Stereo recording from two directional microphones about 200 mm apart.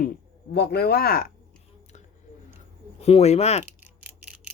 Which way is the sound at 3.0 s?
30° left (ahead or behind).